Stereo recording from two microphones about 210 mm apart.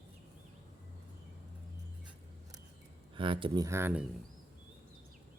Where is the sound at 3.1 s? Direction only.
25° right (ahead or behind).